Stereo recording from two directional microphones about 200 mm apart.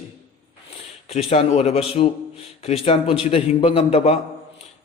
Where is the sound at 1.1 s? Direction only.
30° left (ahead or behind).